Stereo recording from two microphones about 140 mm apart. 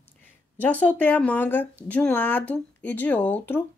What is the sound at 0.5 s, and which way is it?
A woman's voice, 10° left (ahead or behind).